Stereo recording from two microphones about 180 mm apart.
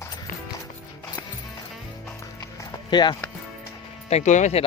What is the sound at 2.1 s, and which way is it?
Music, 20° left (ahead or behind).